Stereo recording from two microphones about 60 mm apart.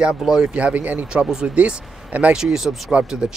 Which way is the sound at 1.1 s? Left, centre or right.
Centre.